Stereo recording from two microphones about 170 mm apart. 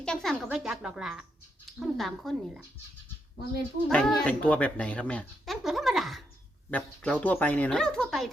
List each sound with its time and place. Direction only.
0.0 s a sound: 5° left (ahead or behind)
0.4 s speech: 5° right (ahead or behind)
3.8 s speech: 5° left (ahead or behind)